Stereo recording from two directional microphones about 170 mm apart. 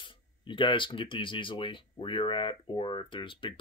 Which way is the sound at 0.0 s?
30° left (ahead or behind).